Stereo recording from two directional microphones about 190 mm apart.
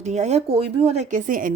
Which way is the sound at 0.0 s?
35° right (ahead or behind).